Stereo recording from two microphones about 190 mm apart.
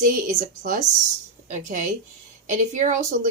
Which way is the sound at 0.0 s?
40° right (ahead or behind).